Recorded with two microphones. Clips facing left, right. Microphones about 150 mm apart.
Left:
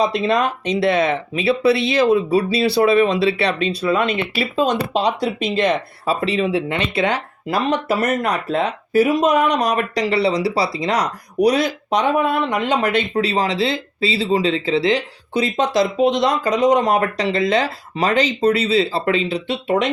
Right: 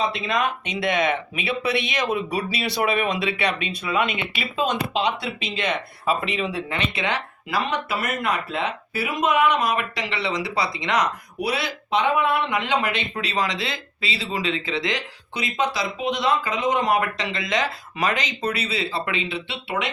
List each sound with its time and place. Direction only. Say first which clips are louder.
0.0 s speech: left 6 dB; 35° left (ahead or behind)